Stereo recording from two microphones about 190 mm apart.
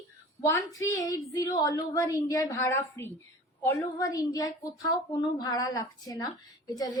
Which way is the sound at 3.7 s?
15° left (ahead or behind).